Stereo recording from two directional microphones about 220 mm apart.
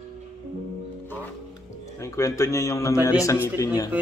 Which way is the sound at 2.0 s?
15° left (ahead or behind).